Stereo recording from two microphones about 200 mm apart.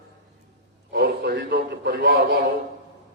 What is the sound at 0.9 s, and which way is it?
A man's voice, 60° right (ahead or behind).